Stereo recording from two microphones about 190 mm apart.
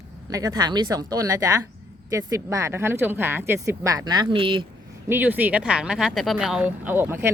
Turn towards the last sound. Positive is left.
turn(degrees=-10)  # may be behind; listen again after turning